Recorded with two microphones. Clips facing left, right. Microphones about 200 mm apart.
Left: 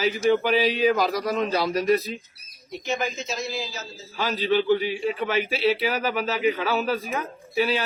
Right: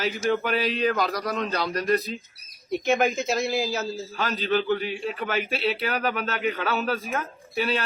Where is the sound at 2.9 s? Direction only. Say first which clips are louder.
Right 5 dB; 60° right (ahead or behind).